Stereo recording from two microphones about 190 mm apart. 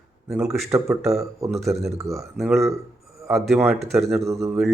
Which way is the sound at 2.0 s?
15° right (ahead or behind).